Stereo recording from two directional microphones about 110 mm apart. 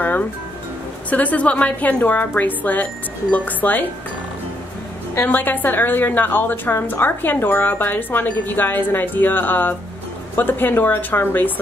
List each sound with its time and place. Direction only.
1.1 s a woman's voice: 15° left (ahead or behind)
5.1 s a woman's voice: 20° left (ahead or behind)